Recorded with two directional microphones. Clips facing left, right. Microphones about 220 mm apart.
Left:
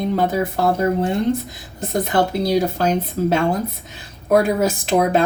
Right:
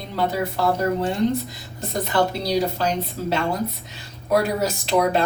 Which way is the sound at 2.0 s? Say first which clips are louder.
Left 3 dB; 50° left (ahead or behind).